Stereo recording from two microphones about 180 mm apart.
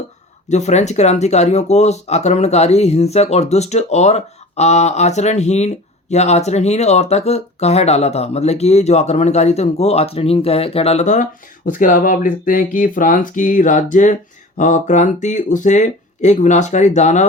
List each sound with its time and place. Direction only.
0.4 s speech: 40° left (ahead or behind)